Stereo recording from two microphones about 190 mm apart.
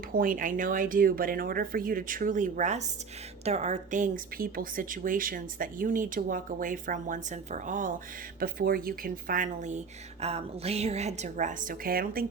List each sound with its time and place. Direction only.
0.1 s a woman's voice: 45° right (ahead or behind)